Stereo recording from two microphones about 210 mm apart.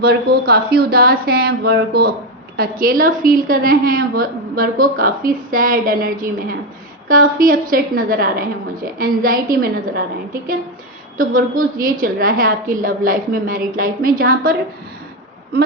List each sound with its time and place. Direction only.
0.0 s a woman's voice: 50° right (ahead or behind)
11.2 s a woman's voice: 40° right (ahead or behind)